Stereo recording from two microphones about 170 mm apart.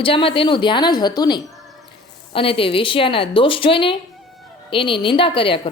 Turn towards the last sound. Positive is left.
turn(degrees=30)  # may be behind; listen again after turning